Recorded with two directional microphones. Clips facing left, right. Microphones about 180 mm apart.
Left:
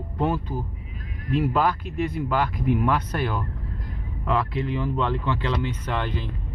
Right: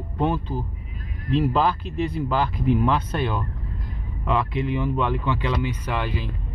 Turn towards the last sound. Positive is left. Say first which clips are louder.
# right 1 dB
turn(degrees=-10)  # may be behind; listen again after turning